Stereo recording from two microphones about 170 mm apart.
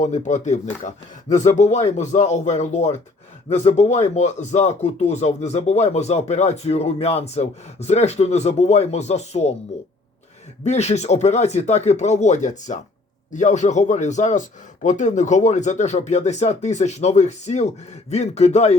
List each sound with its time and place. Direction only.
0.0 s speech: 45° left (ahead or behind)
10.6 s speech: 40° left (ahead or behind)